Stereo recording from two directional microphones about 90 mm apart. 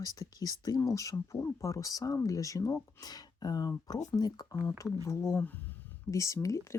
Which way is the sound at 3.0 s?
45° left (ahead or behind).